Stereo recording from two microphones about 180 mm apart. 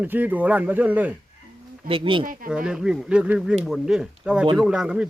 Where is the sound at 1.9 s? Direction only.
30° right (ahead or behind).